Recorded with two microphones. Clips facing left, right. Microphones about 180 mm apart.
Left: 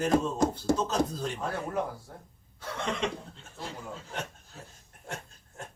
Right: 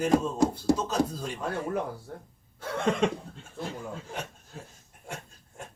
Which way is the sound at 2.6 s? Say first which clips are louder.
Right 6 dB; 50° right (ahead or behind).